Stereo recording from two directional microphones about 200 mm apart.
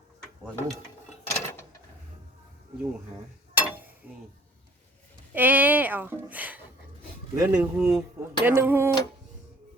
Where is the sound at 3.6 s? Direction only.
10° right (ahead or behind).